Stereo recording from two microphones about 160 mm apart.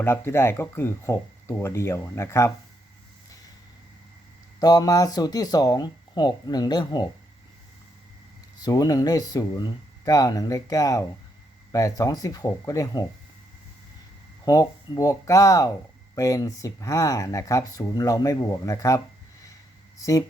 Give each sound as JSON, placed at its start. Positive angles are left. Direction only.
{"t": 0.0, "sound": "speech", "side_deg": 15}
{"t": 4.6, "sound": "speech", "side_deg": 25}
{"t": 8.6, "sound": "speech", "side_deg": 25}
{"t": 14.4, "sound": "speech", "side_deg": 20}